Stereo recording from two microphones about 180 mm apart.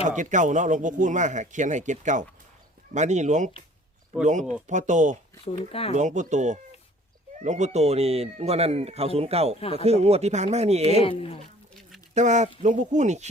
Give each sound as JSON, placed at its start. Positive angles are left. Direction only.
{"t": 0.2, "sound": "speech", "side_deg": -45}
{"t": 5.5, "sound": "speech", "side_deg": 35}
{"t": 5.9, "sound": "speech", "side_deg": -40}
{"t": 12.1, "sound": "speech", "side_deg": -40}